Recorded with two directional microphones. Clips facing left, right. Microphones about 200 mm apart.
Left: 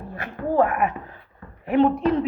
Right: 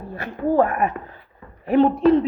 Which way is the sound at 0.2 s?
40° right (ahead or behind).